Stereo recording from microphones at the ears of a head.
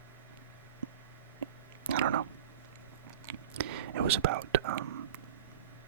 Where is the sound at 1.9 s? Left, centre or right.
Right.